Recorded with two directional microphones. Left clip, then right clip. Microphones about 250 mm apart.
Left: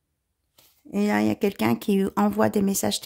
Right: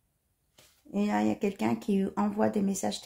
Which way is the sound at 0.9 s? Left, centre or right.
Left.